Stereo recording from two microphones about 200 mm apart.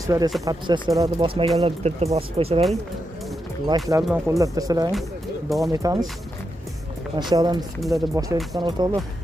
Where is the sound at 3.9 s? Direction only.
15° right (ahead or behind).